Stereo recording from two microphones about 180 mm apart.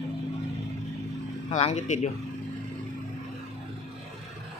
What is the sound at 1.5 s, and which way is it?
Speech, 40° left (ahead or behind).